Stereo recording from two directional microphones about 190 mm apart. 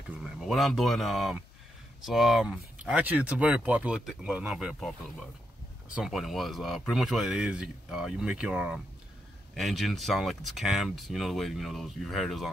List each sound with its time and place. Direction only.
0.2 s speech: centre (ahead or behind)
5.9 s speech: centre (ahead or behind)